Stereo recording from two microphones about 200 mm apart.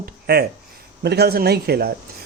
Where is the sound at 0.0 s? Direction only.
50° right (ahead or behind).